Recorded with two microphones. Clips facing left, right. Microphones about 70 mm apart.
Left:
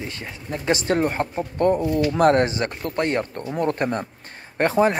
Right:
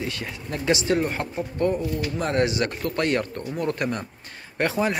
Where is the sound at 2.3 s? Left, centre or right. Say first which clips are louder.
Left 2 dB; left.